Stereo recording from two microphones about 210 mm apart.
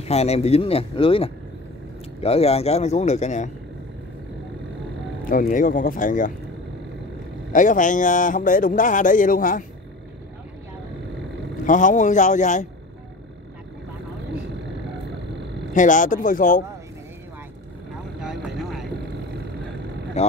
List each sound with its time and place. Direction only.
0.0 s a man's voice: 30° left (ahead or behind)
5.3 s a man's voice: 40° left (ahead or behind)
7.5 s a man's voice: 40° left (ahead or behind)
11.6 s a man's voice: 35° left (ahead or behind)
15.7 s a man's voice: 35° left (ahead or behind)
18.2 s vehicle: centre (ahead or behind)
20.2 s speech: 30° left (ahead or behind)